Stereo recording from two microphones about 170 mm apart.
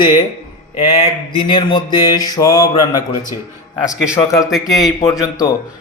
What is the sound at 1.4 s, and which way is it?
A man's voice, 30° left (ahead or behind).